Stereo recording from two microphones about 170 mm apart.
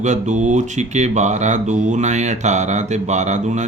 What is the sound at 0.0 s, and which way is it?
Speech, 45° right (ahead or behind).